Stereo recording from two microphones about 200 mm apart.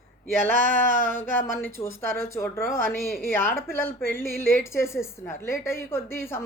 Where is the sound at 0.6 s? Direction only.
45° right (ahead or behind).